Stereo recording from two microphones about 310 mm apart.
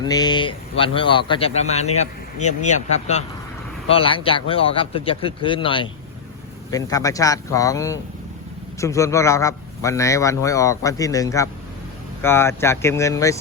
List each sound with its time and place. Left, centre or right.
0.0 s a man's voice: centre